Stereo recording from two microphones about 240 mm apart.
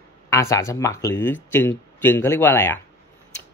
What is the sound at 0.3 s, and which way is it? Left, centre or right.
Speech, centre.